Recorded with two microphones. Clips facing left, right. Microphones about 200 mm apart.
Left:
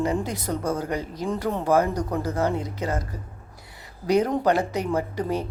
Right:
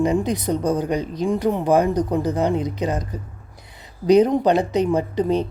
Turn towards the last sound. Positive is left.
turn(degrees=-20)  # may be behind; listen again after turning